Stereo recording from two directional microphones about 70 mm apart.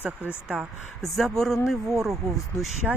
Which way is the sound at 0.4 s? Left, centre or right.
Centre.